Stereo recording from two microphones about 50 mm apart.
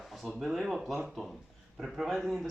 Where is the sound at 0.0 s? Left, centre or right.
Centre.